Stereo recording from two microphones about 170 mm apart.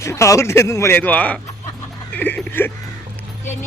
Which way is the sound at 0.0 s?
15° left (ahead or behind).